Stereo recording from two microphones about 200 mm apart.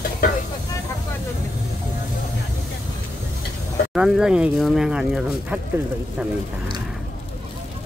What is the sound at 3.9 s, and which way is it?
Speech, 5° right (ahead or behind).